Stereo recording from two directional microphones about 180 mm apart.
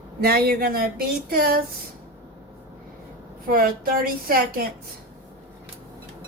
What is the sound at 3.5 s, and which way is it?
Speech, 55° right (ahead or behind).